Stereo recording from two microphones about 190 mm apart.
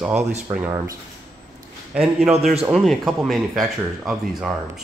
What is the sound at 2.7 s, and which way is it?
Speech, centre (ahead or behind).